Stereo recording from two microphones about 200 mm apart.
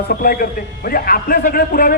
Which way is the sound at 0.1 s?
45° left (ahead or behind).